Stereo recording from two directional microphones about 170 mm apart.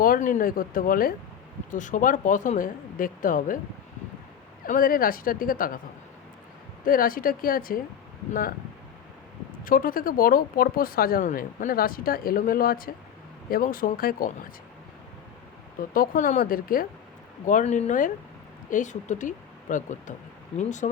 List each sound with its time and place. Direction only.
0.0 s speech: 55° left (ahead or behind)
4.6 s speech: 55° left (ahead or behind)
6.8 s speech: 55° left (ahead or behind)
9.6 s speech: 55° left (ahead or behind)
15.9 s speech: 55° left (ahead or behind)
17.4 s speech: 45° left (ahead or behind)